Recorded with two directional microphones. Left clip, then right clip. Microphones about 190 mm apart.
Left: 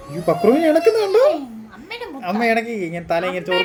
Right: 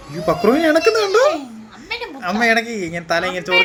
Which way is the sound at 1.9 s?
45° left (ahead or behind).